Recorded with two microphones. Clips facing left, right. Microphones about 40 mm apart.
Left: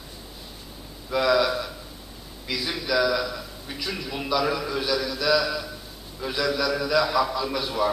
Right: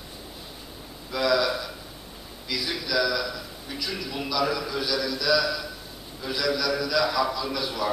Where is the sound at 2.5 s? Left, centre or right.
Centre.